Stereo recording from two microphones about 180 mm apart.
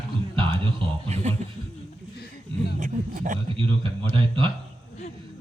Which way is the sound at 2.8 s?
45° right (ahead or behind).